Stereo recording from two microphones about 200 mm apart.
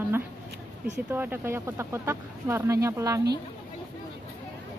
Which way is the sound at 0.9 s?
10° right (ahead or behind).